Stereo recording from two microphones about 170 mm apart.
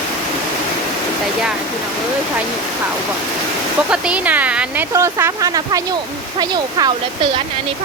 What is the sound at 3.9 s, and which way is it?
Speech, 5° right (ahead or behind).